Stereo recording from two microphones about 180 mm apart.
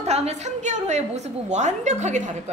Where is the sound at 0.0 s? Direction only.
35° right (ahead or behind).